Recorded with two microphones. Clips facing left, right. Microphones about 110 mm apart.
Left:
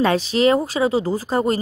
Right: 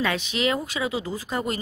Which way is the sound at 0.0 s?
35° left (ahead or behind).